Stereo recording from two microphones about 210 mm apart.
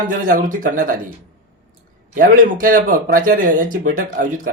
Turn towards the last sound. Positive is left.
turn(degrees=-40)  # may be behind; listen again after turning